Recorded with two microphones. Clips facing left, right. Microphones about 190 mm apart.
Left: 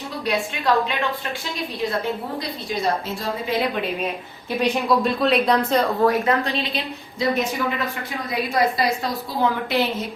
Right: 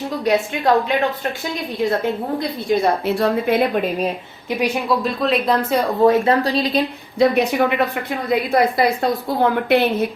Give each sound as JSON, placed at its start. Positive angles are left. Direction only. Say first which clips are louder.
{"t": 0.3, "sound": "a woman's voice", "louder": "right 5 dB", "side_deg": -45}
{"t": 2.8, "sound": "a woman's voice", "louder": "right 7 dB", "side_deg": -60}
{"t": 4.5, "sound": "a woman's voice", "louder": "even", "side_deg": -10}
{"t": 6.1, "sound": "speech", "louder": "right 5 dB", "side_deg": -30}
{"t": 7.2, "sound": "a woman's voice", "louder": "right 7 dB", "side_deg": -65}